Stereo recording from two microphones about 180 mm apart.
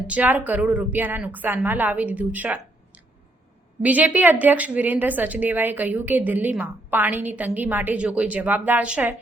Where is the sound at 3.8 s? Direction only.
10° right (ahead or behind).